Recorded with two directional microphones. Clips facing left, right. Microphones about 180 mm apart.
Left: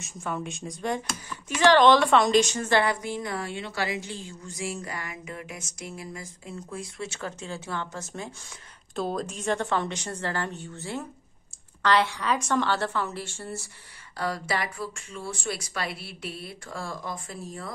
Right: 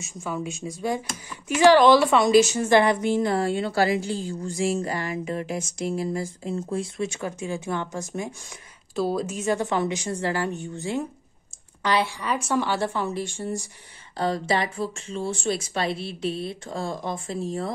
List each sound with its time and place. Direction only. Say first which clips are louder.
0.0 s speech: right 2 dB; 5° right (ahead or behind); by 7.1 s 25° right (ahead or behind)
7.1 s a woman's voice: right 5 dB; 15° right (ahead or behind)